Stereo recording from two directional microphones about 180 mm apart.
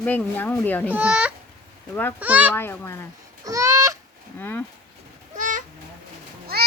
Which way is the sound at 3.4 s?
20° right (ahead or behind).